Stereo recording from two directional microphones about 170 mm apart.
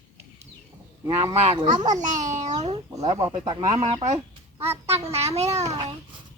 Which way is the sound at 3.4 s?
20° right (ahead or behind).